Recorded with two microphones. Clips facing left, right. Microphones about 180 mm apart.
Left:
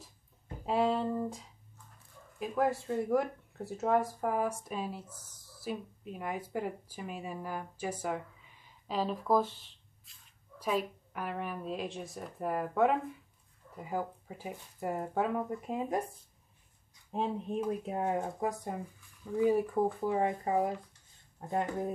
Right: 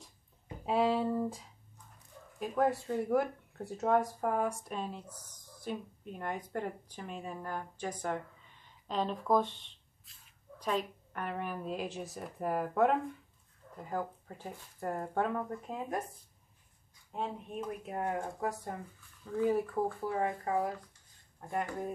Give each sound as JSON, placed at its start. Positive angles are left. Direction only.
{"t": 0.7, "sound": "speech", "side_deg": 0}
{"t": 17.6, "sound": "speech", "side_deg": 20}